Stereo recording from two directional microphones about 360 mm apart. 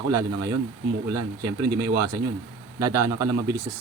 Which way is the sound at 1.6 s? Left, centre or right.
Centre.